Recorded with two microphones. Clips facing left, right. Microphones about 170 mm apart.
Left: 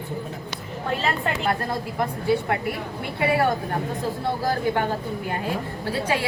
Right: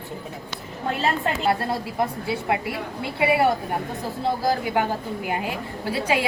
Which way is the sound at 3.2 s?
20° right (ahead or behind).